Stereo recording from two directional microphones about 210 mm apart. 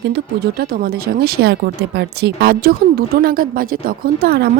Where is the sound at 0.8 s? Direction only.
50° right (ahead or behind).